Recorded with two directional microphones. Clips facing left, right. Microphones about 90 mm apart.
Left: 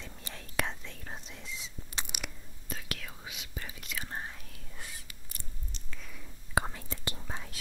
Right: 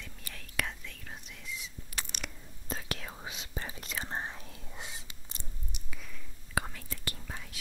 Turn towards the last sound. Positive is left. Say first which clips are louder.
# left 2 dB
turn(degrees=25)  # may be behind; listen again after turning